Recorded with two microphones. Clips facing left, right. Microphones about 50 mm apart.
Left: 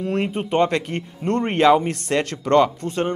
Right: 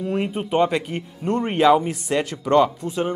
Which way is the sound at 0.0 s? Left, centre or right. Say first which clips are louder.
Left 1 dB; centre.